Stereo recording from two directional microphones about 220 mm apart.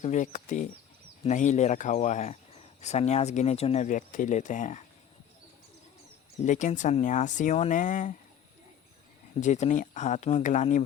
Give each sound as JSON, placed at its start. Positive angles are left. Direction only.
{"t": 0.0, "sound": "speech", "side_deg": 35}
{"t": 6.4, "sound": "speech", "side_deg": 35}
{"t": 9.4, "sound": "speech", "side_deg": 30}